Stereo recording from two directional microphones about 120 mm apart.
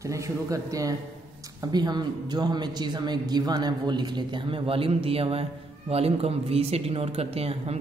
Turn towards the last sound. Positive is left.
turn(degrees=-55)  # may be behind; listen again after turning